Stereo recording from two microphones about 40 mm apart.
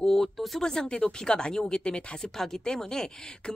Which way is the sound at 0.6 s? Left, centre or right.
Centre.